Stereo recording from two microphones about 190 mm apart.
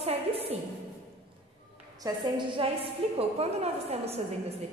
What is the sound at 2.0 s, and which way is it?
A woman's voice, 20° right (ahead or behind).